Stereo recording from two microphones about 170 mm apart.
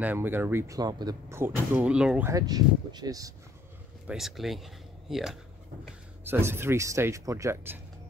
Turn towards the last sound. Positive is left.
turn(degrees=-15)  # may be behind; listen again after turning